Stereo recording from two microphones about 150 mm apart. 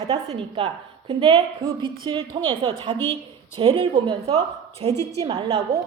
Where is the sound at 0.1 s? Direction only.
40° right (ahead or behind).